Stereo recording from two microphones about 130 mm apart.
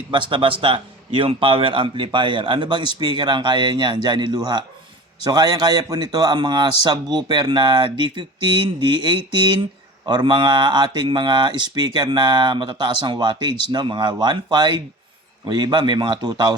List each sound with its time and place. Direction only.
0.1 s a man's voice: 40° right (ahead or behind)